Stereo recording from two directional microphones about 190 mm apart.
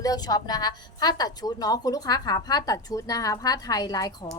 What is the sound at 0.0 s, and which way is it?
A woman's voice, 20° left (ahead or behind).